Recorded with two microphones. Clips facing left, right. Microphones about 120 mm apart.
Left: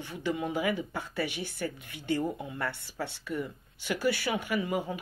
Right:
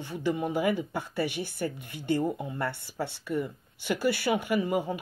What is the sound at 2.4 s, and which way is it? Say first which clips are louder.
Speech: right 3 dB; 35° right (ahead or behind).